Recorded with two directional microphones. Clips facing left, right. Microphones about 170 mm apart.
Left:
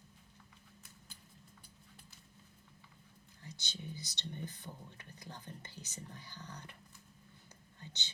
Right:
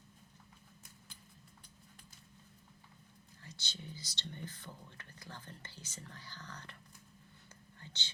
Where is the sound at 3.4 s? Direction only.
15° left (ahead or behind).